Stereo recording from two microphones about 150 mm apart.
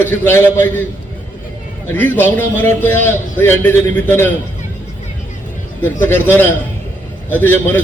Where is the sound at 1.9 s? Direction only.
15° left (ahead or behind).